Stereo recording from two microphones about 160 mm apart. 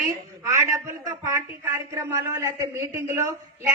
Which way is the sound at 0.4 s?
20° right (ahead or behind).